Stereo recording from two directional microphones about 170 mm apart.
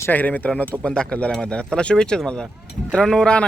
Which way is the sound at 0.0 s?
10° left (ahead or behind).